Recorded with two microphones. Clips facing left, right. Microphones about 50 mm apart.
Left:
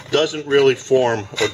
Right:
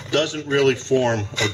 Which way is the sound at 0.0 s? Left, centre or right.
Centre.